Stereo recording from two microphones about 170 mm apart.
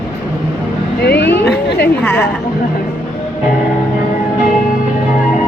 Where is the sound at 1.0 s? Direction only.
75° left (ahead or behind).